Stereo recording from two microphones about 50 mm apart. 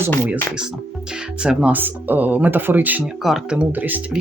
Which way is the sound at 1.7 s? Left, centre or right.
Right.